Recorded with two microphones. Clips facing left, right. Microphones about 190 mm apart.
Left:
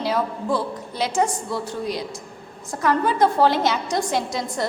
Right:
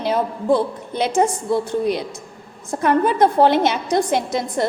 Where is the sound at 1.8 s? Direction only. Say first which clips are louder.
Right 6 dB; 60° right (ahead or behind).